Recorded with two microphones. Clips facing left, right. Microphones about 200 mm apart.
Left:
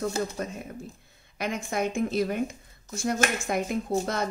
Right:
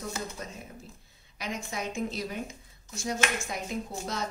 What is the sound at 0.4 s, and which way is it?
Speech, 60° left (ahead or behind).